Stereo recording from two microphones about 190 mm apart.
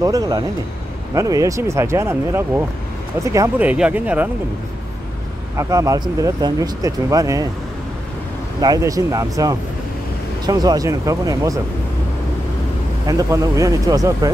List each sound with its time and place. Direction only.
0.0 s speech: 20° right (ahead or behind)
5.6 s speech: 15° right (ahead or behind)
8.5 s speech: 20° right (ahead or behind)
13.0 s speech: 15° right (ahead or behind)